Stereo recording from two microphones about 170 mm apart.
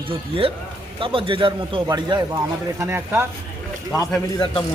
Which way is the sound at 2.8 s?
15° right (ahead or behind).